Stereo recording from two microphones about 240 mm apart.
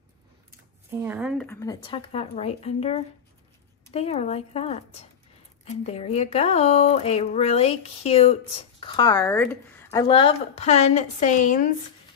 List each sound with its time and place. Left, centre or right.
0.9 s speech: centre
1.4 s speech: centre; by 11.7 s left